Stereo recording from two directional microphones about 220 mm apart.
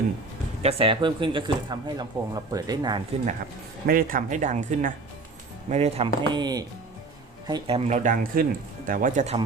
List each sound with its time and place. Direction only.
0.6 s speech: 25° right (ahead or behind)
3.8 s speech: 40° right (ahead or behind); by 7.8 s 20° right (ahead or behind)
7.9 s speech: 35° right (ahead or behind)